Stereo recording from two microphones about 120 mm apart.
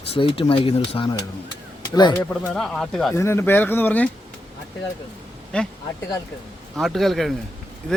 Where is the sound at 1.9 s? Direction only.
35° left (ahead or behind).